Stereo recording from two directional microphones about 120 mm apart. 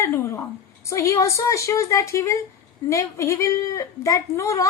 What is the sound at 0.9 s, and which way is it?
A child's voice, 25° left (ahead or behind).